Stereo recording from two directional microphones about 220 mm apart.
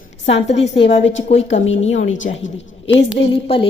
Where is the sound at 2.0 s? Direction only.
60° left (ahead or behind).